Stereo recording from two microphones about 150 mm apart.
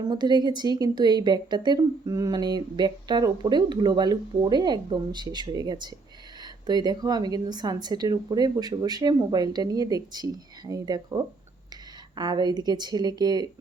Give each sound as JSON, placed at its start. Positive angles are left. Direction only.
{"t": 0.0, "sound": "speech", "side_deg": -30}